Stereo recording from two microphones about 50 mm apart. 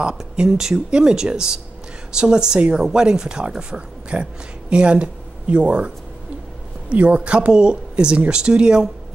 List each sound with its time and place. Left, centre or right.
0.0 s speech: centre
6.9 s speech: right